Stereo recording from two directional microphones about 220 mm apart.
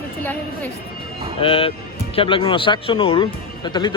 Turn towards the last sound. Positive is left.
turn(degrees=20)  # may be behind; listen again after turning